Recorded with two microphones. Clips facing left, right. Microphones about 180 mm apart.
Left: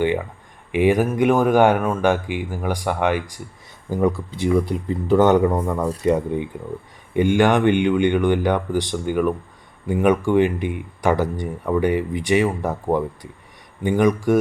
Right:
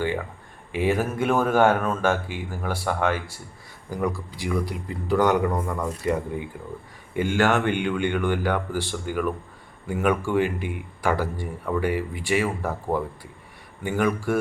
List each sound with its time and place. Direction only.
0.7 s speech: 15° left (ahead or behind)